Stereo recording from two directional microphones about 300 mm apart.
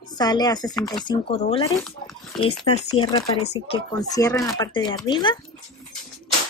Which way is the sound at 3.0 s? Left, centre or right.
Centre.